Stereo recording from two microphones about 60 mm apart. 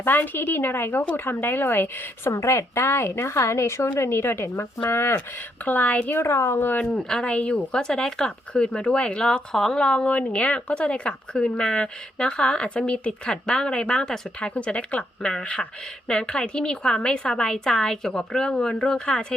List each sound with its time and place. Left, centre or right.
0.0 s speech: left
2.3 s a woman's voice: left
5.6 s speech: left
6.1 s a woman's voice: left
7.1 s a woman's voice: centre